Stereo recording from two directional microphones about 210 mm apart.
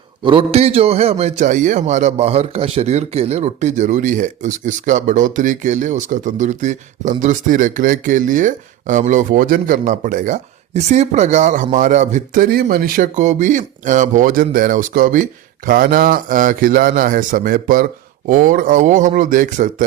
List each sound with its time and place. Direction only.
0.3 s a man's voice: 25° right (ahead or behind)